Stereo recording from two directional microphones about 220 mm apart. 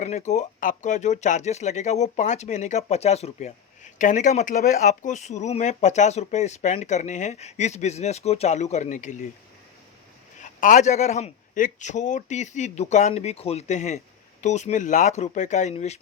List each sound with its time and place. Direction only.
0.0 s speech: 30° left (ahead or behind)
10.4 s speech: 35° left (ahead or behind)